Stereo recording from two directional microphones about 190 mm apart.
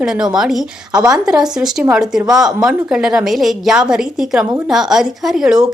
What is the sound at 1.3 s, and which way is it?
A woman's voice, 5° right (ahead or behind).